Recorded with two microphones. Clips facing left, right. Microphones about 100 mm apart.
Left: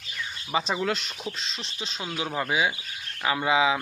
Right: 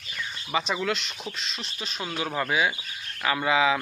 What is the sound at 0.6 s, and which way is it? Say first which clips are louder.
Speech: left 1 dB; 30° left (ahead or behind).